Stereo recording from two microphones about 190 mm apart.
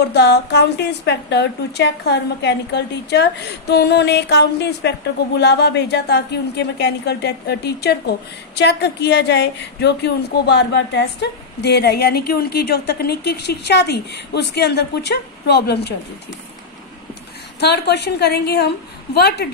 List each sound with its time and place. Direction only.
0.0 s a woman's voice: 60° left (ahead or behind)
17.6 s a woman's voice: 60° left (ahead or behind)